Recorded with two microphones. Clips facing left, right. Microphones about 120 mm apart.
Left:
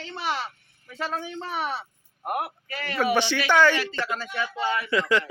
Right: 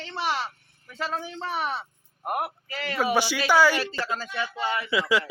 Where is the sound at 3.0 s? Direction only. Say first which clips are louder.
Left 1 dB; 10° right (ahead or behind).